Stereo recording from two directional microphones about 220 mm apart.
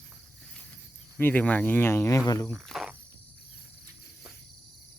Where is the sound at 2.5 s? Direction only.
Centre (ahead or behind).